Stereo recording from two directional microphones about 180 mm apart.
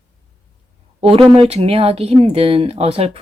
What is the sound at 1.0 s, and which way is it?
Speech, 30° right (ahead or behind).